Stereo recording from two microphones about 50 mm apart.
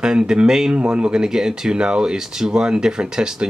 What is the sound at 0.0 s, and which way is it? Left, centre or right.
Speech, centre.